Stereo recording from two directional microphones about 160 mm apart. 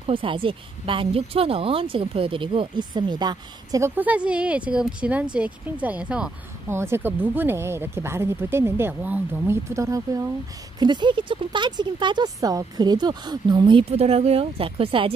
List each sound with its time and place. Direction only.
0.0 s speech: 35° right (ahead or behind)
3.9 s speech: 10° right (ahead or behind); by 15.1 s 35° right (ahead or behind)